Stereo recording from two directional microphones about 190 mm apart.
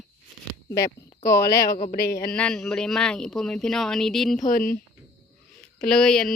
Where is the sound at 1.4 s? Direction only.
55° left (ahead or behind).